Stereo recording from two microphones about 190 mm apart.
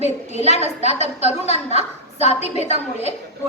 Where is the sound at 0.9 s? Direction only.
35° right (ahead or behind).